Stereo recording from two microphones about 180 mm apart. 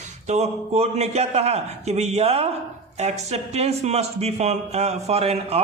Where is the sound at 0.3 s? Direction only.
35° right (ahead or behind).